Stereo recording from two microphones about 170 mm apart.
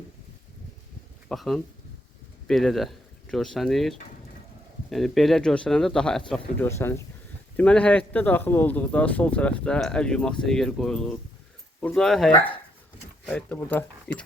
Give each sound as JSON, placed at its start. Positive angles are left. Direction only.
{"t": 1.3, "sound": "speech", "side_deg": 0}
{"t": 6.7, "sound": "a man's voice", "side_deg": 15}